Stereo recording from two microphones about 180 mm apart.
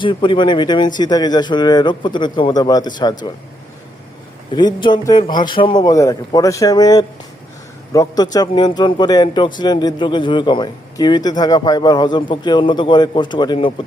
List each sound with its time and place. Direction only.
0.0 s speech: 25° left (ahead or behind)
4.5 s speech: 25° left (ahead or behind)